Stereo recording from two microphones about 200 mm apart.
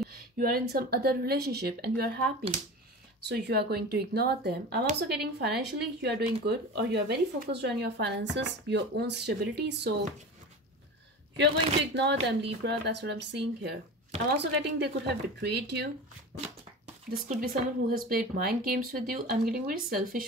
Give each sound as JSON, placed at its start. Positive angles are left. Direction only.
{"t": 0.4, "sound": "speech", "side_deg": -50}
{"t": 3.3, "sound": "speech", "side_deg": -55}
{"t": 11.9, "sound": "speech", "side_deg": -60}
{"t": 16.3, "sound": "speech", "side_deg": -35}